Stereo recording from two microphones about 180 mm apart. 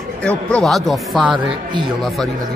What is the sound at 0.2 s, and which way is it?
Speech, 5° left (ahead or behind).